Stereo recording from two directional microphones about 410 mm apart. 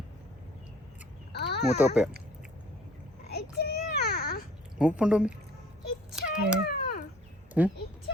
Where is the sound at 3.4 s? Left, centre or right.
Left.